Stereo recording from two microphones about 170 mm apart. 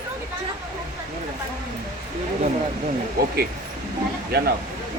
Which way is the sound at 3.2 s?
60° right (ahead or behind).